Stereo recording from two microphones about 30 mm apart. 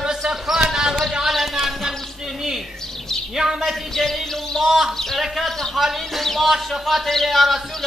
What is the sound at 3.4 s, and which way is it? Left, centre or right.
Speech, centre.